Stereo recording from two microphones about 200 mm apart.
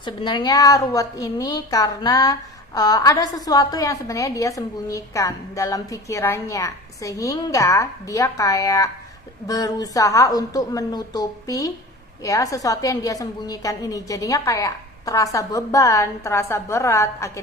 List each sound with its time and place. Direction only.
0.0 s a woman's voice: 20° left (ahead or behind)